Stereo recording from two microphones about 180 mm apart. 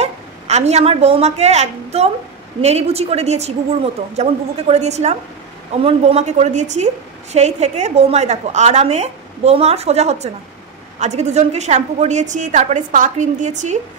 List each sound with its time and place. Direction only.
0.0 s a woman's voice: 40° right (ahead or behind)